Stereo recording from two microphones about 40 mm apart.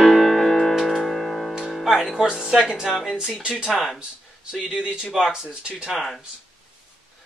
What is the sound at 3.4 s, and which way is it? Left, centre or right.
Speech, right.